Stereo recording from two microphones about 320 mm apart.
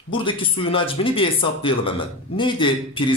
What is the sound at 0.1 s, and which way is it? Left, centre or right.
Speech, centre.